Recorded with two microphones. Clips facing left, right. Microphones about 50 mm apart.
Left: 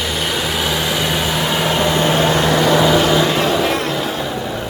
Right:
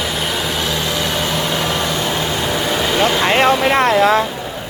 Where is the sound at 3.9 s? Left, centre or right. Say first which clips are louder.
Right 9 dB; right.